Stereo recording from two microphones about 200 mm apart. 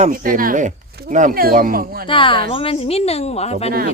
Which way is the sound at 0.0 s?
45° right (ahead or behind).